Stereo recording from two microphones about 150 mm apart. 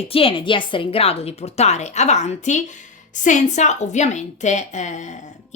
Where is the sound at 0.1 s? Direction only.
35° left (ahead or behind).